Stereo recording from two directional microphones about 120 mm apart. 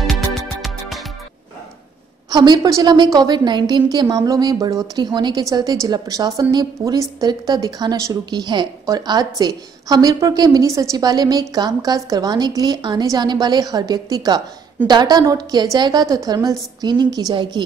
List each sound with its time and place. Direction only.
0.0 s music: centre (ahead or behind)
2.2 s a woman's voice: 35° right (ahead or behind)